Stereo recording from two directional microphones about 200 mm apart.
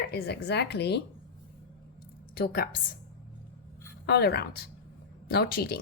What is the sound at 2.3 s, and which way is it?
Speech, 50° left (ahead or behind).